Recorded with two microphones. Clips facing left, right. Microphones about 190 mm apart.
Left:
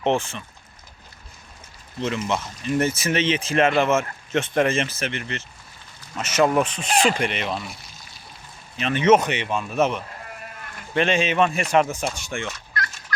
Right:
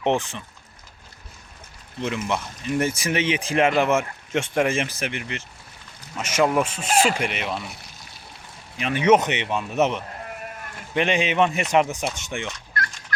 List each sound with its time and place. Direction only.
0.0 s speech: 15° right (ahead or behind)
2.0 s speech: 10° right (ahead or behind)
8.8 s speech: 10° right (ahead or behind)
13.1 s turkey: 55° right (ahead or behind)